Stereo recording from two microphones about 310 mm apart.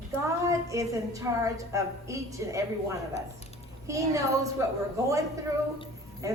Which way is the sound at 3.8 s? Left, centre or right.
Centre.